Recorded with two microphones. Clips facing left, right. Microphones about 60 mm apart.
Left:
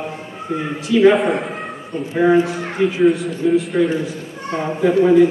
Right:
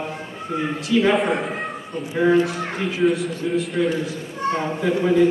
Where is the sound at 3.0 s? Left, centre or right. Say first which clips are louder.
Left 3 dB; centre.